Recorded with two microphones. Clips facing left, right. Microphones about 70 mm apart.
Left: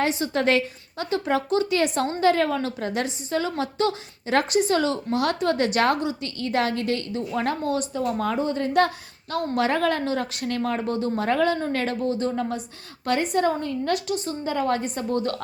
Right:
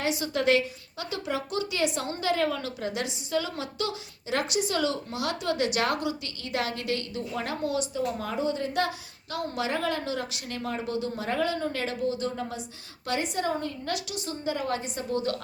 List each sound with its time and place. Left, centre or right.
0.0 s a woman's voice: left